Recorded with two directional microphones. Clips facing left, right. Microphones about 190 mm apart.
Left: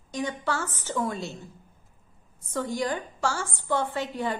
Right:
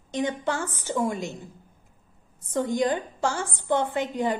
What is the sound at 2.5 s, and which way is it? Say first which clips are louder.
A woman's voice: right 4 dB; 20° right (ahead or behind).